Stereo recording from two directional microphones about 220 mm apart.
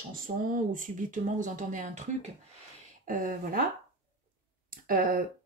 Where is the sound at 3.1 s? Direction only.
40° right (ahead or behind).